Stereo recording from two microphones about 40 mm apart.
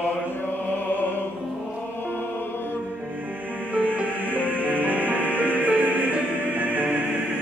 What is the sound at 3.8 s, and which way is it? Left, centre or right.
Music, right.